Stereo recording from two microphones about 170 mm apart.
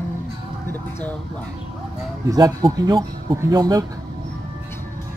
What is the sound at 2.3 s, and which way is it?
Speech, 25° right (ahead or behind).